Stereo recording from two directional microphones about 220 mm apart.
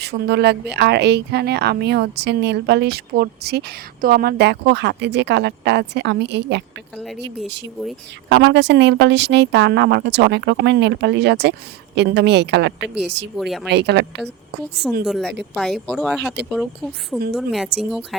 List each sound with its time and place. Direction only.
0.0 s a woman's voice: 50° right (ahead or behind)
6.9 s speech: centre (ahead or behind)
7.4 s a woman's voice: 50° right (ahead or behind)
13.3 s speech: centre (ahead or behind)
13.7 s a woman's voice: 50° right (ahead or behind)
15.0 s speech: centre (ahead or behind)